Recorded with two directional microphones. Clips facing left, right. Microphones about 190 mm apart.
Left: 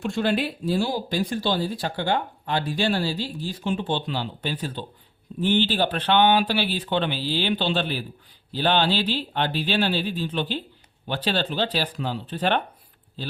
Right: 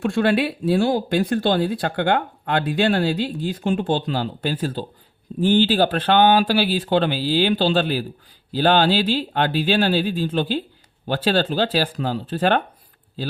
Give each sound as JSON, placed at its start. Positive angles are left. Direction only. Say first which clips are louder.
{"t": 0.0, "sound": "speech", "louder": "right 5 dB", "side_deg": -60}